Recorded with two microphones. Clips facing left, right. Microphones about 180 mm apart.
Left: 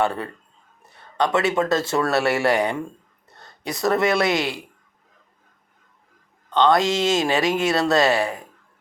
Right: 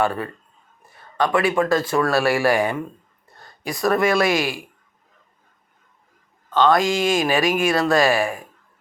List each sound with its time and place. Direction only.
0.0 s speech: 25° left (ahead or behind)
6.5 s speech: 20° left (ahead or behind)